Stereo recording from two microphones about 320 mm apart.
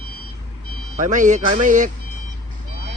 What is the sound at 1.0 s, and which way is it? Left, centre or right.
Speech, right.